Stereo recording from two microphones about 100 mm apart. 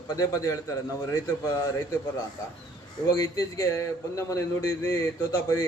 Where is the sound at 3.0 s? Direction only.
35° left (ahead or behind).